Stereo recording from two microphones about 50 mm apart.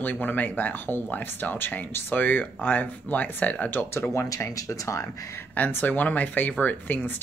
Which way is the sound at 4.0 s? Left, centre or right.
Left.